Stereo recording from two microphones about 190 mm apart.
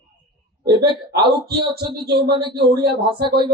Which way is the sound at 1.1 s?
25° right (ahead or behind).